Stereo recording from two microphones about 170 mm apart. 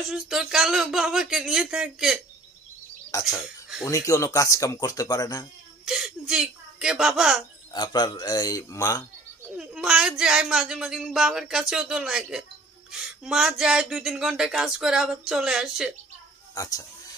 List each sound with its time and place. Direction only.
0.1 s speech: 5° right (ahead or behind)
3.1 s speech: 20° left (ahead or behind)
5.9 s speech: centre (ahead or behind)
7.7 s speech: 25° left (ahead or behind)
9.6 s speech: 5° right (ahead or behind)
16.5 s speech: 20° left (ahead or behind)